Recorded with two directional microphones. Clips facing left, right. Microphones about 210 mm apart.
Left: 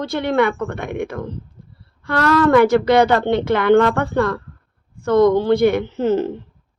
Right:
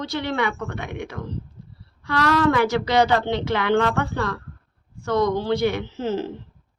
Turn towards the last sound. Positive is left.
turn(degrees=55)  # may be behind; listen again after turning